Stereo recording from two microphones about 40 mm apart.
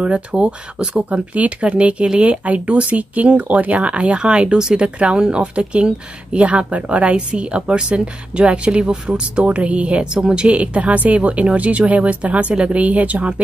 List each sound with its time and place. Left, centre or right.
0.0 s speech: right